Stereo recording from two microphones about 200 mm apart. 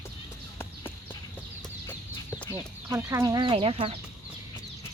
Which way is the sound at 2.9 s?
10° right (ahead or behind).